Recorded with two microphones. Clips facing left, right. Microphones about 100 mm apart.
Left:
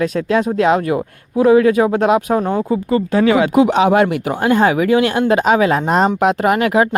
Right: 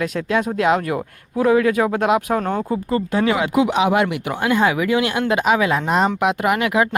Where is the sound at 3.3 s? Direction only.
30° left (ahead or behind).